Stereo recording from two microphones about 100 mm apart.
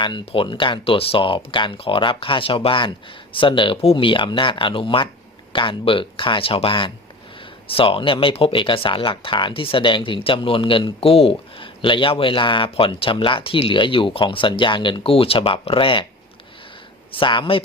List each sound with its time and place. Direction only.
0.3 s speech: 60° left (ahead or behind)
3.9 s speech: 55° left (ahead or behind)
17.1 s speech: 55° left (ahead or behind)